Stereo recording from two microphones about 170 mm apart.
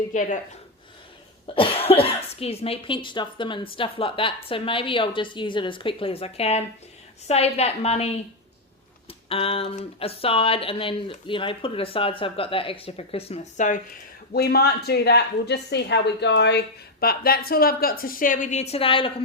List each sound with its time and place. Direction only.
0.1 s speech: 45° left (ahead or behind)
1.5 s speech: 35° left (ahead or behind)
18.7 s speech: 30° left (ahead or behind)